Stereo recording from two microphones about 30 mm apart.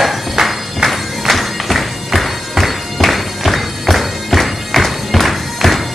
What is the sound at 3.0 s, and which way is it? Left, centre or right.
Bagpipes, centre.